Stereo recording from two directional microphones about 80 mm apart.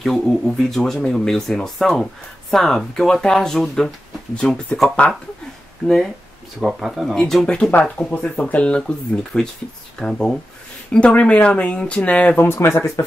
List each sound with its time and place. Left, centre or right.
0.0 s speech: centre
6.6 s speech: centre
8.1 s speech: centre; by 12.9 s left